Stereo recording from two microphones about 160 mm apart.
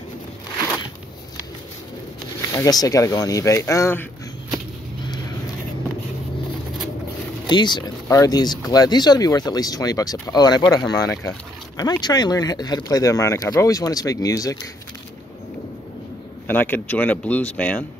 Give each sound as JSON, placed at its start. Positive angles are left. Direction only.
{"t": 2.5, "sound": "speech", "side_deg": 20}
{"t": 7.4, "sound": "speech", "side_deg": 30}
{"t": 16.4, "sound": "speech", "side_deg": 10}